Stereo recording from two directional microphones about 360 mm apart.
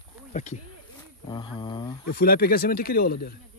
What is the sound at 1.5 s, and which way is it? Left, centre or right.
Speech, centre.